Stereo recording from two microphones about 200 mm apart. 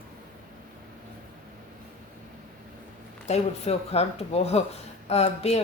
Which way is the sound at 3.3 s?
30° left (ahead or behind).